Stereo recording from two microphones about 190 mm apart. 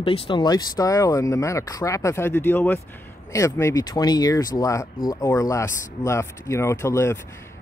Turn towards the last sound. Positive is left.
turn(degrees=15)  # may be behind; listen again after turning